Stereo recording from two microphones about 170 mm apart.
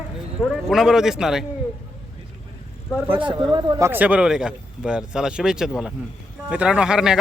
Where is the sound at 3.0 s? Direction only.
10° right (ahead or behind).